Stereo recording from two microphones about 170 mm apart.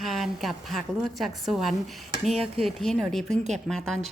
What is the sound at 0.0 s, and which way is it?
A woman's voice, centre (ahead or behind).